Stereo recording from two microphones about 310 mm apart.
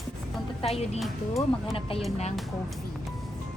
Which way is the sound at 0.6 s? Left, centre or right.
Centre.